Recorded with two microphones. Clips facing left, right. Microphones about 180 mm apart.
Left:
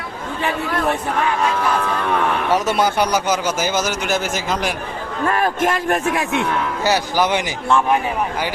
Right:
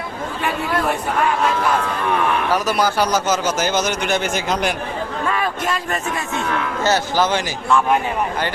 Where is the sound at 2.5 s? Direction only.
25° left (ahead or behind); by 4.7 s centre (ahead or behind).